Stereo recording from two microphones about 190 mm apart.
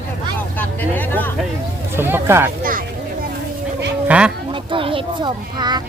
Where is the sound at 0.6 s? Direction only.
10° left (ahead or behind).